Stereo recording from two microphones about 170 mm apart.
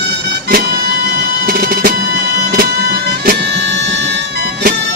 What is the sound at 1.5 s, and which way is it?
Music, 60° right (ahead or behind).